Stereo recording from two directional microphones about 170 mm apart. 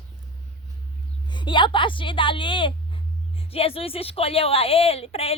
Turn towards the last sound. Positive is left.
turn(degrees=35)  # may be behind; listen again after turning